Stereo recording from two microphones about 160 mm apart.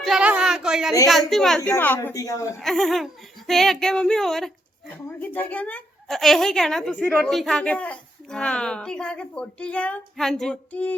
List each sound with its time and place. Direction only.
0.0 s a woman's voice: 5° right (ahead or behind)
1.7 s speech: 15° left (ahead or behind)
2.6 s a woman's voice: centre (ahead or behind)